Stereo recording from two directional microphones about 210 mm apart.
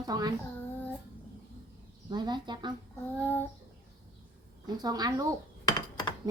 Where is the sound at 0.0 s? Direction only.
20° right (ahead or behind).